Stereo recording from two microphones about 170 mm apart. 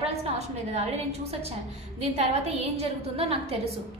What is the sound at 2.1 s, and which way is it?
A woman's voice, 40° right (ahead or behind).